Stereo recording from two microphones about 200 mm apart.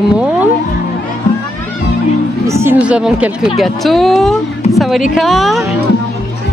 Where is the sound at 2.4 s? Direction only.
15° right (ahead or behind).